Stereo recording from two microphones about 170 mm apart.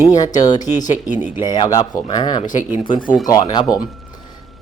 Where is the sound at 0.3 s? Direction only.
25° left (ahead or behind).